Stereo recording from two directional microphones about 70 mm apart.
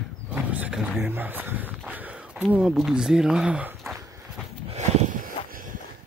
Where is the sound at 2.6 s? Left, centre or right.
Centre.